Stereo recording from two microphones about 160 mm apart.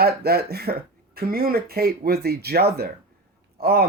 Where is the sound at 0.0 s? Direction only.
75° right (ahead or behind).